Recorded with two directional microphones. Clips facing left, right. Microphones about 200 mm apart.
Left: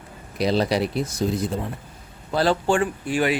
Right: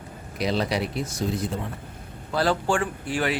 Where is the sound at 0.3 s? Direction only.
35° left (ahead or behind).